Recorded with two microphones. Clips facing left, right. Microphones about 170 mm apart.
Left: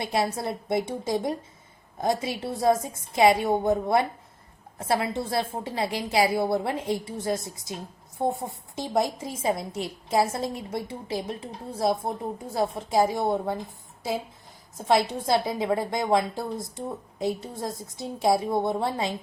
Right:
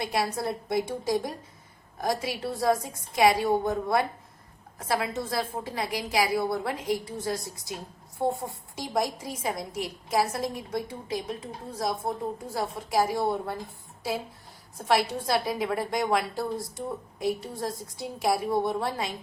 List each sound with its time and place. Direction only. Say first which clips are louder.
0.0 s a woman's voice: left 2 dB; 25° left (ahead or behind)
14.8 s a woman's voice: left 3 dB; 20° left (ahead or behind)